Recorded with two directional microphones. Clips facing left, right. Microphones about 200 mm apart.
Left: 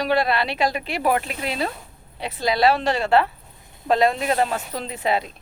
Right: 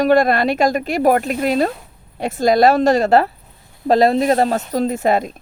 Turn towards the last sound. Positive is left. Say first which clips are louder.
# right 7 dB
turn(degrees=-45)  # may be behind; listen again after turning